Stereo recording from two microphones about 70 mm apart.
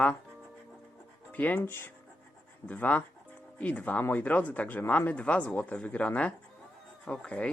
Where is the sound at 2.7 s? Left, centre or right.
Left.